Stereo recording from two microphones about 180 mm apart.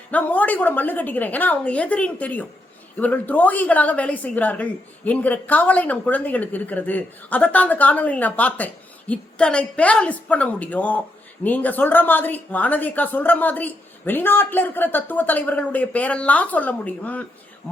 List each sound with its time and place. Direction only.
0.1 s a woman's voice: 10° left (ahead or behind)